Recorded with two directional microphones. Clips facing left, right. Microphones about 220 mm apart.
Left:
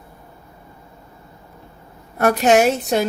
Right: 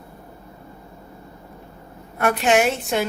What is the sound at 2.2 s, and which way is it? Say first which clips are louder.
Speech: left 4 dB; 40° left (ahead or behind).